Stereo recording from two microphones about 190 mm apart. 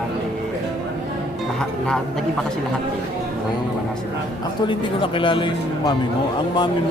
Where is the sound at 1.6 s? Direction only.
5° left (ahead or behind).